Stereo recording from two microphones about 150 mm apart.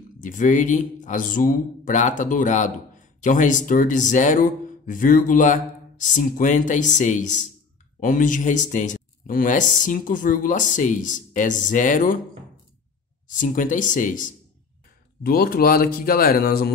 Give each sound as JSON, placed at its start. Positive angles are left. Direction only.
{"t": 0.2, "sound": "speech", "side_deg": 60}
{"t": 13.3, "sound": "speech", "side_deg": 60}
{"t": 15.2, "sound": "speech", "side_deg": 85}